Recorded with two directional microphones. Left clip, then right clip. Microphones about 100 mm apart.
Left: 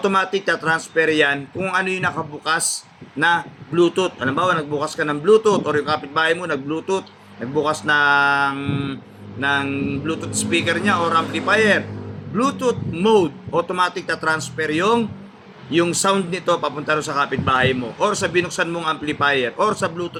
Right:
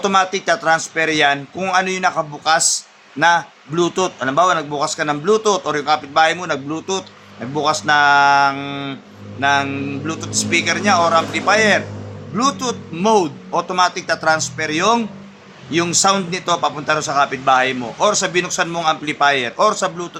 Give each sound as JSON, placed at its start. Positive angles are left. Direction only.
{"t": 0.0, "sound": "a man's voice", "side_deg": -45}